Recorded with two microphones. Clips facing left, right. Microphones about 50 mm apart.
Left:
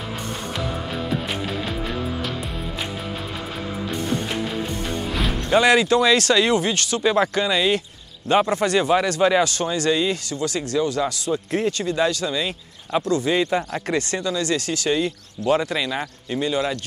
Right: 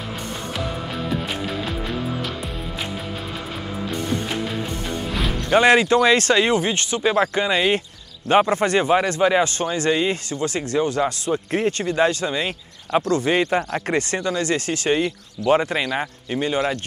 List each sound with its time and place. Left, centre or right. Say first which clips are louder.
5.1 s music: even; centre
5.5 s speech: right 1 dB; right